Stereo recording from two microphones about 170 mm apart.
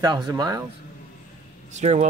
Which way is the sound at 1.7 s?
40° right (ahead or behind).